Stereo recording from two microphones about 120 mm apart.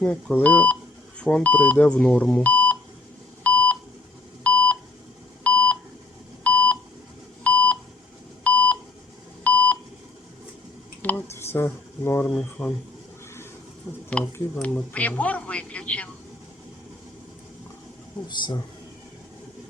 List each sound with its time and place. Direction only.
0.0 s a man's voice: 10° left (ahead or behind)
3.4 s beep: 10° left (ahead or behind)
11.0 s a sound: 20° left (ahead or behind)
12.2 s a man's voice: 5° left (ahead or behind)
13.9 s a man's voice: 20° left (ahead or behind)
18.3 s speech: 40° left (ahead or behind)